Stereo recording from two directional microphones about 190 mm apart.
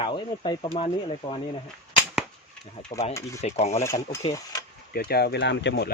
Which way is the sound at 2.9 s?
35° left (ahead or behind).